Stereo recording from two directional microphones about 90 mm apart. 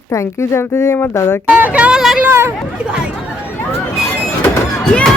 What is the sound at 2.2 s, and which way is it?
Speech, 30° right (ahead or behind).